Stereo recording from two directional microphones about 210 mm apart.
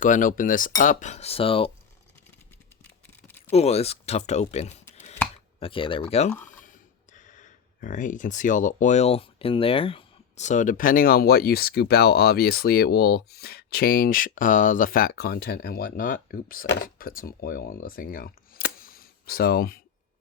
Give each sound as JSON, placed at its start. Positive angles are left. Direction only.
{"t": 0.0, "sound": "speech", "side_deg": 40}
{"t": 3.2, "sound": "a sound", "side_deg": 10}
{"t": 3.5, "sound": "speech", "side_deg": 30}
{"t": 4.9, "sound": "chopping", "side_deg": 30}
{"t": 5.5, "sound": "speech", "side_deg": 25}